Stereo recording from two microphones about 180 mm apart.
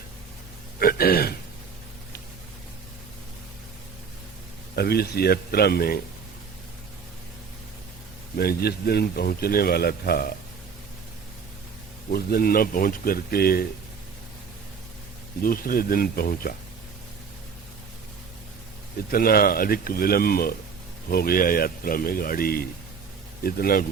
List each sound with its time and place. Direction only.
0.8 s speech: 55° left (ahead or behind)
4.7 s a man's voice: 60° left (ahead or behind)
8.4 s a man's voice: 60° left (ahead or behind)
12.1 s a man's voice: 55° left (ahead or behind)
15.4 s speech: 50° left (ahead or behind)
19.1 s a man's voice: 55° left (ahead or behind)